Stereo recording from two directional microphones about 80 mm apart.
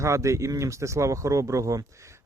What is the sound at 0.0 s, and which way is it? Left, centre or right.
Speech, right.